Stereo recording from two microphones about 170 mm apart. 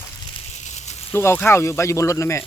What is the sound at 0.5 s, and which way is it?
Snake, 40° left (ahead or behind).